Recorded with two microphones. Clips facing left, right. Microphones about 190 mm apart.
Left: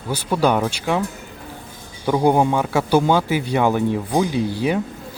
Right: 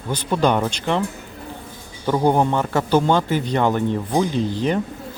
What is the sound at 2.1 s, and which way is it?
Speech, 10° left (ahead or behind).